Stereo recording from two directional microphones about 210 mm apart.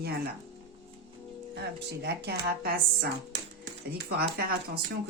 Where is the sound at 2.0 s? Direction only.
50° right (ahead or behind).